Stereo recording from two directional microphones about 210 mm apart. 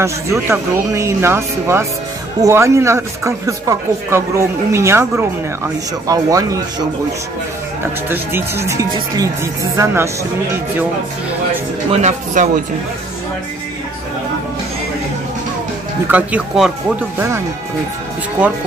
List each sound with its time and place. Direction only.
0.0 s speech: 15° right (ahead or behind)
8.1 s speech: 10° right (ahead or behind)
11.9 s speech: 35° right (ahead or behind)
16.1 s speech: 5° right (ahead or behind)